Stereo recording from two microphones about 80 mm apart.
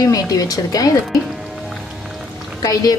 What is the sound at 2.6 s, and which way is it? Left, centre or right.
Speech, left.